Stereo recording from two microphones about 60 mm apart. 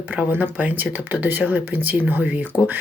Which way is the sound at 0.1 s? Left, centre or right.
Right.